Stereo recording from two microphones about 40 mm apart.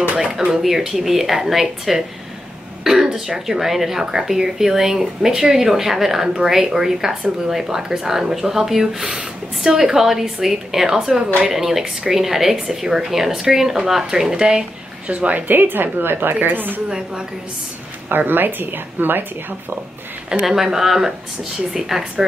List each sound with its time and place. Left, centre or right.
0.2 s speech: right
0.6 s speech: centre
14.3 s speech: centre
15.0 s a woman's voice: right
18.1 s speech: right
20.4 s speech: centre